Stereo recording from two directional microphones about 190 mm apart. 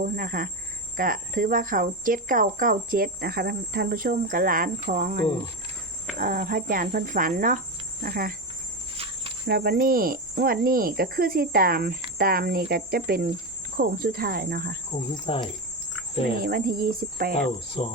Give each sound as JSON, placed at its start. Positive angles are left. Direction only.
{"t": 0.0, "sound": "speech", "side_deg": -50}
{"t": 9.0, "sound": "cricket", "side_deg": -30}
{"t": 9.5, "sound": "speech", "side_deg": -55}
{"t": 15.3, "sound": "speech", "side_deg": 30}
{"t": 16.4, "sound": "speech", "side_deg": -50}
{"t": 17.8, "sound": "speech", "side_deg": 30}